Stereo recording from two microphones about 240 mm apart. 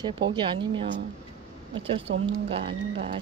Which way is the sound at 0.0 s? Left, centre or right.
Centre.